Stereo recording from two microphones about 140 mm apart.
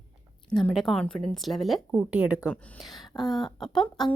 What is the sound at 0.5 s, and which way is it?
A woman's voice, centre (ahead or behind).